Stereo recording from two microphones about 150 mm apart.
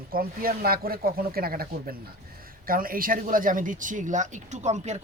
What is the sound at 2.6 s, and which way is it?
Speech, 70° right (ahead or behind).